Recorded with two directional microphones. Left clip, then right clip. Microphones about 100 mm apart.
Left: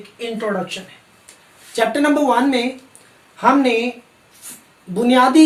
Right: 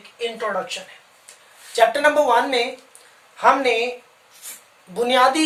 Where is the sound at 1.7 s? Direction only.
35° right (ahead or behind).